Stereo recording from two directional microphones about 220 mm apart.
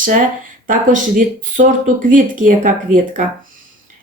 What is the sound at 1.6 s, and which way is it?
Speech, 35° right (ahead or behind).